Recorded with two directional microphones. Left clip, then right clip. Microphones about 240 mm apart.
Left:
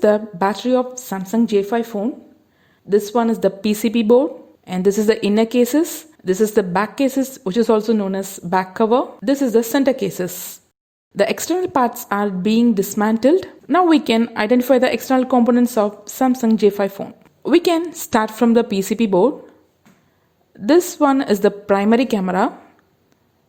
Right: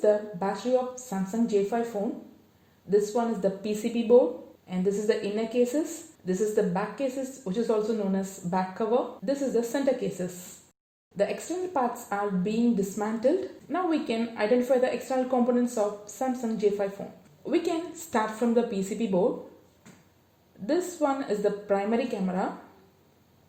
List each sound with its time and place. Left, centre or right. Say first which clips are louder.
0.0 s a woman's voice: left 9 dB; left
2.9 s a woman's voice: left 8 dB; left
20.7 s a woman's voice: left 12 dB; left